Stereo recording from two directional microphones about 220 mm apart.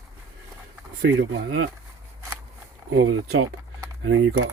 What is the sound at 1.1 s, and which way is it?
Speech, 55° right (ahead or behind).